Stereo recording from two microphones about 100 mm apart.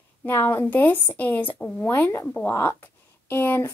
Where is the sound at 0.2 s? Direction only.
25° left (ahead or behind).